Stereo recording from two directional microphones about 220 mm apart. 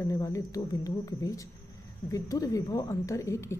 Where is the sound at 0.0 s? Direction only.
15° left (ahead or behind).